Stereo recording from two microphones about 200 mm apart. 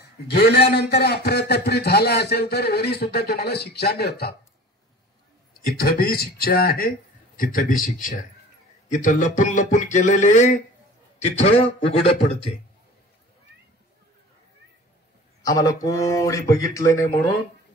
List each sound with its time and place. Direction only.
0.0 s a man's voice: 55° left (ahead or behind)
5.8 s a man's voice: 50° left (ahead or behind); by 12.4 s 30° left (ahead or behind)
15.4 s speech: 15° left (ahead or behind)